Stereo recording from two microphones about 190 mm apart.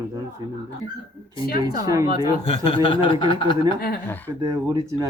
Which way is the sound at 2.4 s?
30° left (ahead or behind).